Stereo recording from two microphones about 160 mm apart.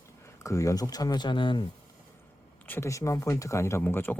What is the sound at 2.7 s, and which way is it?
Speech, 15° left (ahead or behind).